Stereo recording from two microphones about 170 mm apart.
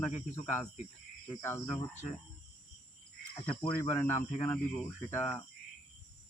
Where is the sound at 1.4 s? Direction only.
15° left (ahead or behind).